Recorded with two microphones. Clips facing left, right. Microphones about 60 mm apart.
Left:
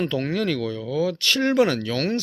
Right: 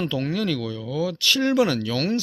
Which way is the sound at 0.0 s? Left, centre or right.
Left.